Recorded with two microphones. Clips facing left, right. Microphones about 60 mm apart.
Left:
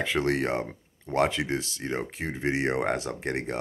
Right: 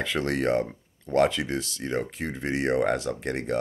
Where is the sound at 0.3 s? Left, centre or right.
Centre.